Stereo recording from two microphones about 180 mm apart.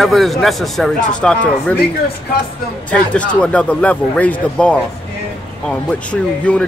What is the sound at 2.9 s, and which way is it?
A man's voice, 5° left (ahead or behind).